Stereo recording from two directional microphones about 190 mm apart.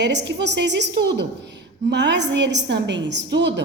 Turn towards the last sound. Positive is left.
turn(degrees=-65)  # may be behind; listen again after turning